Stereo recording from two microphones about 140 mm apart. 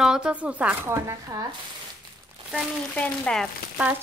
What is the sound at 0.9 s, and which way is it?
Speech, 25° right (ahead or behind).